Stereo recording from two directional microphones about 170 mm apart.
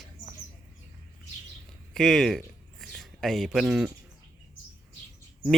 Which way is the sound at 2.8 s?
Centre (ahead or behind).